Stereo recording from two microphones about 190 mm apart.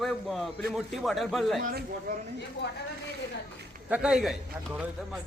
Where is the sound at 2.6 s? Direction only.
65° left (ahead or behind).